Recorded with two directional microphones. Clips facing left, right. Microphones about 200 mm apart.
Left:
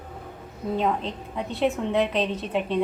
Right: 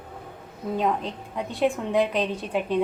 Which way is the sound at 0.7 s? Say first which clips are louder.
Even; 5° right (ahead or behind).